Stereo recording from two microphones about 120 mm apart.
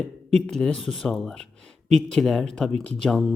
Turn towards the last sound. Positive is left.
turn(degrees=5)  # may be behind; listen again after turning